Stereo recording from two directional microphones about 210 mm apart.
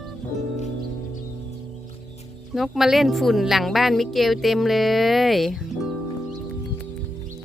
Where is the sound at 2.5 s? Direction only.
Centre (ahead or behind).